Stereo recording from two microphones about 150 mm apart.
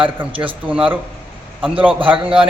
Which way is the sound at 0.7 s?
10° right (ahead or behind).